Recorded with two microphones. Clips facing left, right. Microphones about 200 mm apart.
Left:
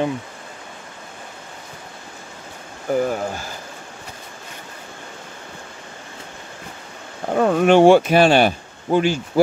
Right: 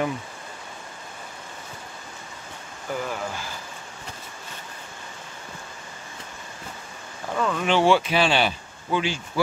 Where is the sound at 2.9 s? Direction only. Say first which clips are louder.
Left 9 dB; 45° left (ahead or behind).